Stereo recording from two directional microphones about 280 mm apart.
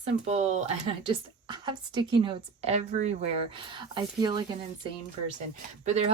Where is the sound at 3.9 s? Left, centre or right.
Centre.